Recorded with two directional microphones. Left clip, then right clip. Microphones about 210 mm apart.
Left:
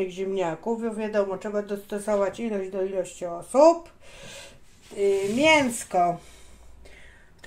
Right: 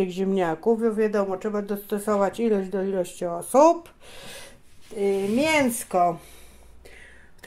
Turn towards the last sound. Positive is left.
turn(degrees=-40)  # may be behind; listen again after turning